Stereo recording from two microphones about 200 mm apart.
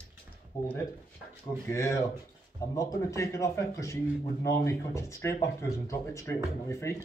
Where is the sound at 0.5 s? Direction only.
15° left (ahead or behind).